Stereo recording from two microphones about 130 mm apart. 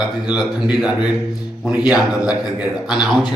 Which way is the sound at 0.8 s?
5° right (ahead or behind).